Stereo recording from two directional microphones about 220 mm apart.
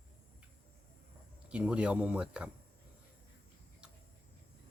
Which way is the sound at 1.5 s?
5° right (ahead or behind).